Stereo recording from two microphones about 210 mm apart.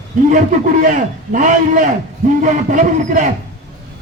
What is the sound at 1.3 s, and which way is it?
A man's voice, 40° right (ahead or behind).